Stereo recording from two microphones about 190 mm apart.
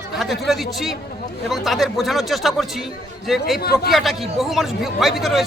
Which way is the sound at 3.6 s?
55° left (ahead or behind).